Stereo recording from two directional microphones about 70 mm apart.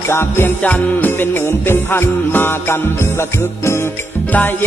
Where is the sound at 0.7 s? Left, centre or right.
Left.